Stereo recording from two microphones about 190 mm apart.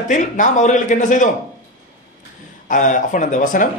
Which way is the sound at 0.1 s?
40° left (ahead or behind).